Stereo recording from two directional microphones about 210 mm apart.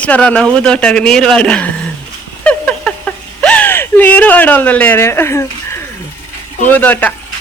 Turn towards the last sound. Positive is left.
turn(degrees=5)  # may be behind; listen again after turning